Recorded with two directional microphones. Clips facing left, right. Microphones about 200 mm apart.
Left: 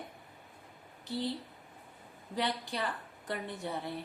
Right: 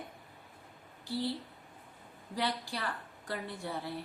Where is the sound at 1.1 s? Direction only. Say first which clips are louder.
Right 1 dB; 20° left (ahead or behind).